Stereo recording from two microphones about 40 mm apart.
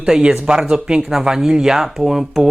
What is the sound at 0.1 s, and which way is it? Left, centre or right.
Speech, centre.